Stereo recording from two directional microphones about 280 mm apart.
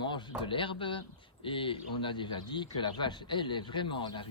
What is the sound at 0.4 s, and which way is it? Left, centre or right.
A man's voice, centre.